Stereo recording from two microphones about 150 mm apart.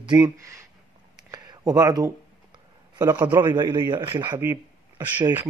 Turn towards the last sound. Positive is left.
turn(degrees=-15)  # may be behind; listen again after turning